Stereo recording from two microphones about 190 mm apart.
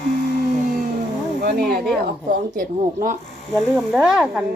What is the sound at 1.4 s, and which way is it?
Speech, 50° right (ahead or behind).